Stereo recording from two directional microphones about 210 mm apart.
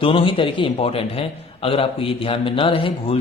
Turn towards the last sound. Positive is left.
turn(degrees=25)  # may be behind; listen again after turning